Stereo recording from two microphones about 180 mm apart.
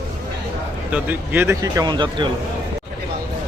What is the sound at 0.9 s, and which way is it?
Speech, 10° right (ahead or behind).